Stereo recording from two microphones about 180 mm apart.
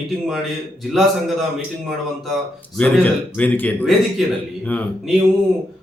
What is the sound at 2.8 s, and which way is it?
Speech, 10° left (ahead or behind).